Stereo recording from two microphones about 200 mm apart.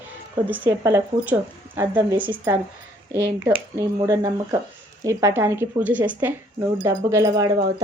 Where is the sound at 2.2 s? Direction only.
25° right (ahead or behind).